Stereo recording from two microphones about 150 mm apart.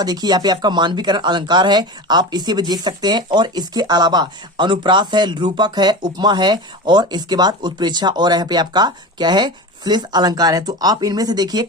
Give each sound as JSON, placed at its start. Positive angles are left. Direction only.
{"t": 0.0, "sound": "speech", "side_deg": -25}